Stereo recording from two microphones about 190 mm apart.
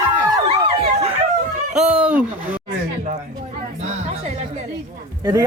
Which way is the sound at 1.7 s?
5° right (ahead or behind).